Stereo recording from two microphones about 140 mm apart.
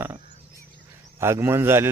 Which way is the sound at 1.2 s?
20° right (ahead or behind).